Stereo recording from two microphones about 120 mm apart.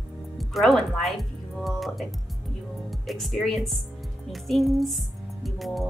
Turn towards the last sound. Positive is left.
turn(degrees=0)  # may be behind; listen again after turning